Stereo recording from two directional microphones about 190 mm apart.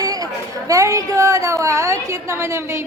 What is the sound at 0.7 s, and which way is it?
A woman's voice, 15° right (ahead or behind).